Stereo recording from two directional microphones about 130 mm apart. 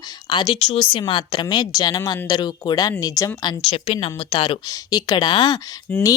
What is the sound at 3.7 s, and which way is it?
Speech, 50° left (ahead or behind).